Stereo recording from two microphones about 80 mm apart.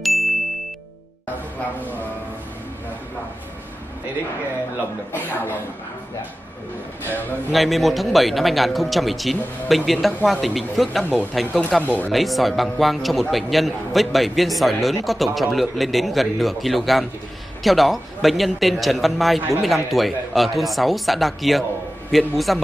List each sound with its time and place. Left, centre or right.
0.0 s ding: centre
5.1 s speech: left
7.5 s a man's voice: centre